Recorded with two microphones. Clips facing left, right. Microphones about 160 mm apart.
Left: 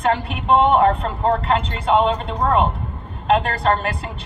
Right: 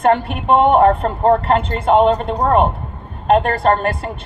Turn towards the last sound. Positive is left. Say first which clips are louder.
# right 4 dB
turn(degrees=-50)  # may be behind; listen again after turning